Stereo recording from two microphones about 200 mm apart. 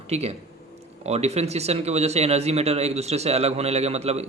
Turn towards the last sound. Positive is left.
turn(degrees=-30)  # may be behind; listen again after turning